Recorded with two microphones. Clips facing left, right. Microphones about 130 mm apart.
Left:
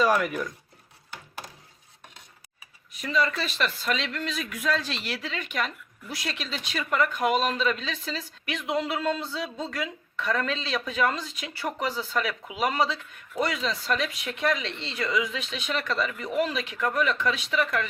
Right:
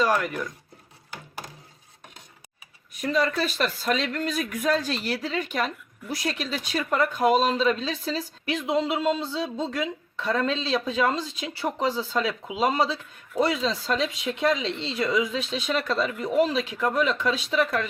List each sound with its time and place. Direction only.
0.0 s speech: 5° left (ahead or behind)
3.0 s speech: 45° right (ahead or behind)